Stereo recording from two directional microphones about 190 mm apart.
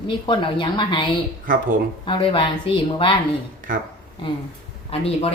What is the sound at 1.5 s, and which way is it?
Speech, 45° right (ahead or behind).